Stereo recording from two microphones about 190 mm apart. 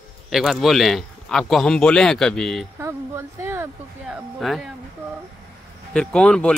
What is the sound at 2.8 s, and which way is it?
Speech, 15° right (ahead or behind).